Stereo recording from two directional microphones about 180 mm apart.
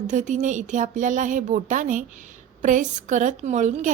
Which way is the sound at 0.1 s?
40° right (ahead or behind).